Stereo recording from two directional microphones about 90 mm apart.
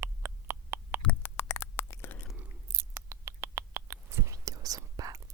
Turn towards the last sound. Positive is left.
turn(degrees=-40)  # may be behind; listen again after turning